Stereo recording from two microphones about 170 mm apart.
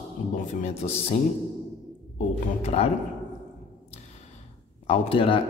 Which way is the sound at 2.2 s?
40° left (ahead or behind).